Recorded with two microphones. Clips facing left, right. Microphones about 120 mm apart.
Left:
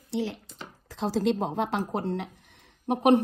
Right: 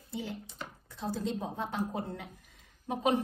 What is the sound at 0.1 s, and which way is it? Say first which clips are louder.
Speech: left 8 dB; 85° left.